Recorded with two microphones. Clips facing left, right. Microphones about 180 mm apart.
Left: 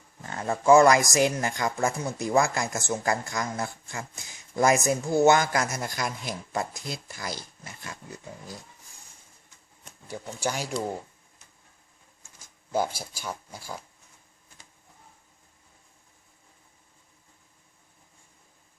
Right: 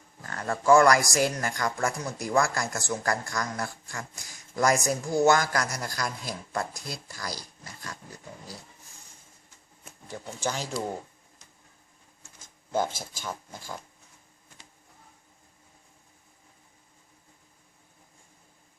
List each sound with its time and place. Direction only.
0.2 s speech: 20° left (ahead or behind)
10.1 s speech: 10° left (ahead or behind)
13.0 s speech: 10° left (ahead or behind)